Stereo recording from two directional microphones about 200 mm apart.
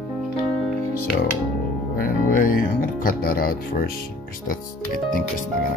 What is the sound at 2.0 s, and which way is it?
Speech, 45° left (ahead or behind).